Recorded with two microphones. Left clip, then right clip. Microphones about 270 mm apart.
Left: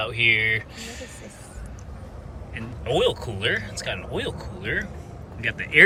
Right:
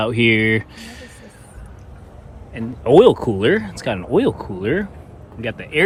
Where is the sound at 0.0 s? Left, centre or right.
Right.